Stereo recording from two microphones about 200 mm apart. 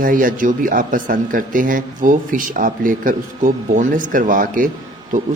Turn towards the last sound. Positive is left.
turn(degrees=-45)  # may be behind; listen again after turning